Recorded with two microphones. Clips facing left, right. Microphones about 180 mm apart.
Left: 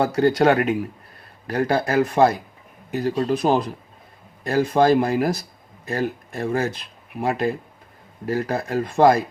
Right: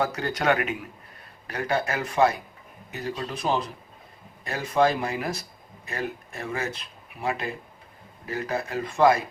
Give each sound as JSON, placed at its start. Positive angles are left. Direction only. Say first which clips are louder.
{"t": 0.0, "sound": "speech", "louder": "left 9 dB", "side_deg": 30}
{"t": 2.0, "sound": "speech", "louder": "left 6 dB", "side_deg": 50}
{"t": 4.4, "sound": "speech", "louder": "left 6 dB", "side_deg": 40}